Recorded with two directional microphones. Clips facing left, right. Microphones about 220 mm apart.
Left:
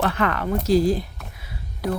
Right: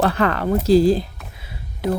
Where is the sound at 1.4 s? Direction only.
25° right (ahead or behind).